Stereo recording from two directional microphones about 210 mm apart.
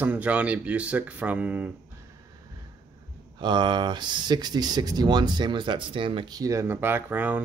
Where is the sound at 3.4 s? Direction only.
20° right (ahead or behind).